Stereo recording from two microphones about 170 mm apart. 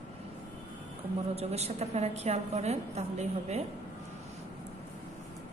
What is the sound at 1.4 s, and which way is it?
A woman's voice, 40° right (ahead or behind).